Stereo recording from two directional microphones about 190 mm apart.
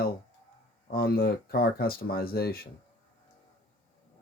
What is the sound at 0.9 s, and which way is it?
Speech, 55° left (ahead or behind).